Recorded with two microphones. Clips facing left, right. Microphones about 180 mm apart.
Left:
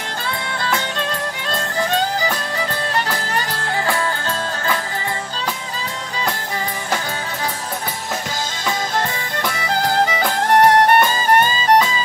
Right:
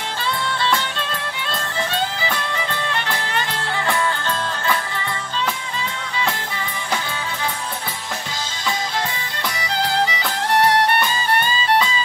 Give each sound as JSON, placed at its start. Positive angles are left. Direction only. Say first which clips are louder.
{"t": 1.5, "sound": "music", "louder": "left 5 dB", "side_deg": 45}
{"t": 9.5, "sound": "music", "louder": "left 2 dB", "side_deg": 50}